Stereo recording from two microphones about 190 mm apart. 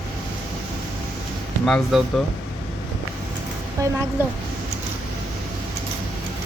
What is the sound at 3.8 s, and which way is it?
Speech, 15° right (ahead or behind).